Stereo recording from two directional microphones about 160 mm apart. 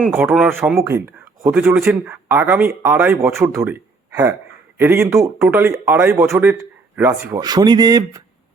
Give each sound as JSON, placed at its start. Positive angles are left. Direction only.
{"t": 0.0, "sound": "speech", "side_deg": -15}